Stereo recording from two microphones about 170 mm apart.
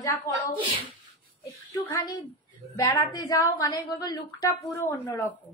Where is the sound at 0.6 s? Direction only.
30° right (ahead or behind).